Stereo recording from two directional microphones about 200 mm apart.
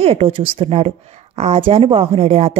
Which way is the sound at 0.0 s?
30° right (ahead or behind).